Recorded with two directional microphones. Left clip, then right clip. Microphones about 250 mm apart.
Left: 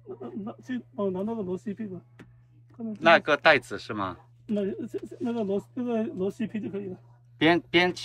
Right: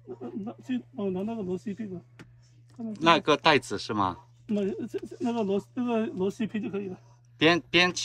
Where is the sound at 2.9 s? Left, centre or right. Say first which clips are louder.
Left 2 dB; centre.